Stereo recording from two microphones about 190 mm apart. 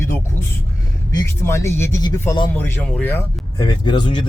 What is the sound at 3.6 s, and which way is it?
Speech, 25° left (ahead or behind).